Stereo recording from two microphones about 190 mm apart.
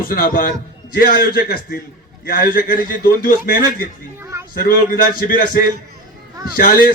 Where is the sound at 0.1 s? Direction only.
50° left (ahead or behind).